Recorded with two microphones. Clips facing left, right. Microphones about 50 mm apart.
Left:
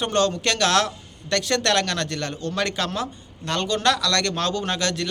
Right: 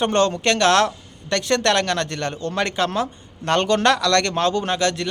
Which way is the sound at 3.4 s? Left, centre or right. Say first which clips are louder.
Right 5 dB; right.